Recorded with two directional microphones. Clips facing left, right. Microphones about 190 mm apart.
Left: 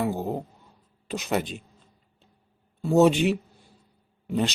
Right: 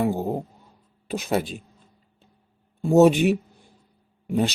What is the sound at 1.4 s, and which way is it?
Speech, 10° right (ahead or behind).